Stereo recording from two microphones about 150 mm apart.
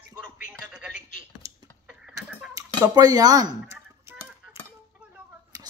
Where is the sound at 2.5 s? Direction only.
25° right (ahead or behind).